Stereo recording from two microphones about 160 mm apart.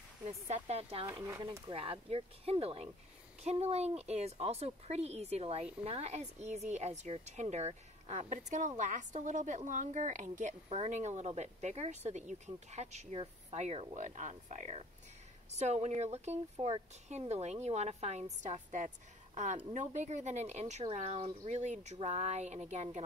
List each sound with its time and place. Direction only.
0.5 s speech: 40° right (ahead or behind)
1.1 s speech: 25° right (ahead or behind)
1.7 s a woman's voice: 35° right (ahead or behind)